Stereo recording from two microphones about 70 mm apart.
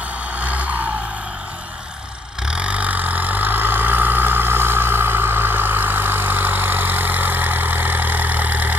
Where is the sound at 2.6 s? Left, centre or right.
Centre.